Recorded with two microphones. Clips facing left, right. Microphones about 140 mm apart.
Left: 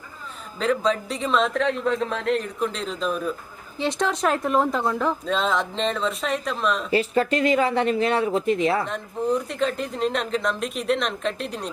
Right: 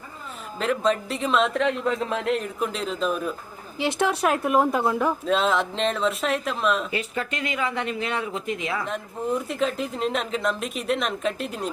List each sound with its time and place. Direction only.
0.6 s a woman's voice: centre (ahead or behind)
6.9 s speech: 35° left (ahead or behind)
8.9 s a woman's voice: centre (ahead or behind)